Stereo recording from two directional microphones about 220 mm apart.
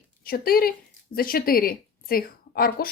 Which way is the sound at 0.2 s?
40° left (ahead or behind).